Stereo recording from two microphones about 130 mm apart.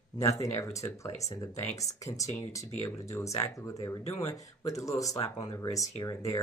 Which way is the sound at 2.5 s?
25° left (ahead or behind).